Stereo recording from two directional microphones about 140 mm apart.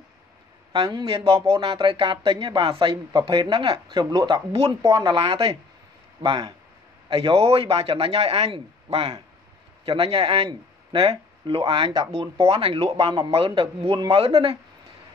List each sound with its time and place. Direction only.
0.7 s speech: 40° right (ahead or behind)
5.1 s speech: 40° right (ahead or behind)
12.9 s speech: 30° right (ahead or behind)